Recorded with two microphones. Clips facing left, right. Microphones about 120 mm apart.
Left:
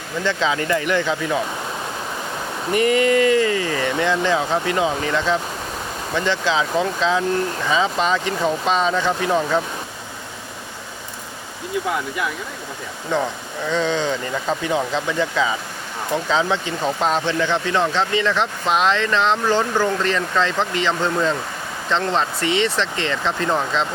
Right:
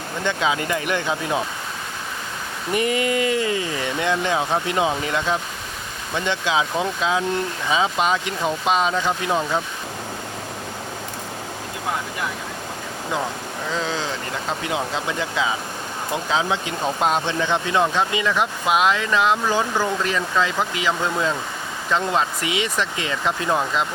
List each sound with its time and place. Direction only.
0.3 s speech: 15° right (ahead or behind)
2.7 s speech: 20° right (ahead or behind)
13.7 s speech: 5° right (ahead or behind)
14.7 s speech: 15° right (ahead or behind)